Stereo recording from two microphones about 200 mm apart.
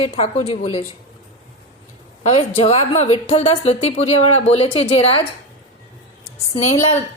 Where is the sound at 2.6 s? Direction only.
30° left (ahead or behind).